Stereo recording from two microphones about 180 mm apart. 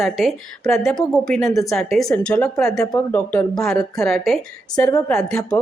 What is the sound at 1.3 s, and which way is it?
Speech, 15° left (ahead or behind).